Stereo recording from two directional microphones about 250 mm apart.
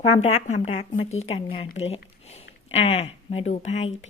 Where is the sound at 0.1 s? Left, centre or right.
Left.